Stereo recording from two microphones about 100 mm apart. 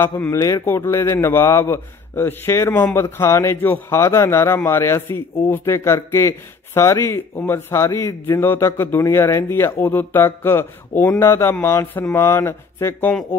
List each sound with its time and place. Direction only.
0.0 s a man's voice: 25° left (ahead or behind)